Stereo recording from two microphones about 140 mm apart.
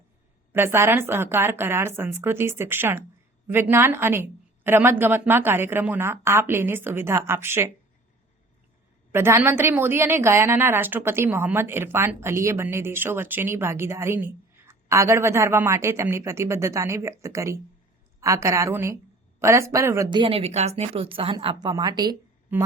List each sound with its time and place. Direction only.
0.5 s a woman's voice: 15° right (ahead or behind)
9.1 s a woman's voice: 15° right (ahead or behind)
20.1 s speech: 35° right (ahead or behind)
21.3 s speech: 30° right (ahead or behind)